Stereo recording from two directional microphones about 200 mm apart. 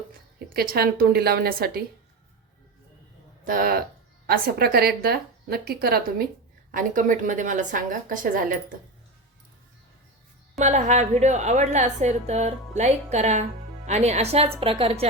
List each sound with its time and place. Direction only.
0.3 s a woman's voice: 45° right (ahead or behind)
3.4 s a woman's voice: 45° right (ahead or behind)
10.6 s a woman's voice: 35° right (ahead or behind)